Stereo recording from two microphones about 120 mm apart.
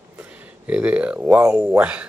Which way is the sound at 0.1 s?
10° right (ahead or behind).